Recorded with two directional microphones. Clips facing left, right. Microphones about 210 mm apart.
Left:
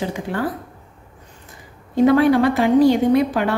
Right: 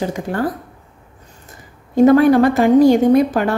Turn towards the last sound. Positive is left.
turn(degrees=-45)  # may be behind; listen again after turning